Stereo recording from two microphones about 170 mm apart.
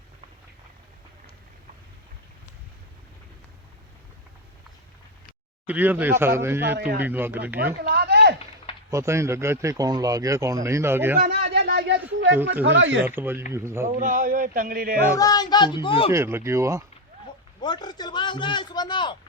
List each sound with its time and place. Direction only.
5.6 s speech: 10° right (ahead or behind)
7.8 s a sound: 65° right (ahead or behind)
8.9 s speech: 15° right (ahead or behind)
11.2 s a sound: 70° right (ahead or behind)
12.6 s speech: 90° right
13.1 s speech: 10° right (ahead or behind)
13.8 s speech: 50° right (ahead or behind)
15.2 s speech: 25° left (ahead or behind)
16.1 s speech: 15° right (ahead or behind)
17.6 s a sound: 25° left (ahead or behind)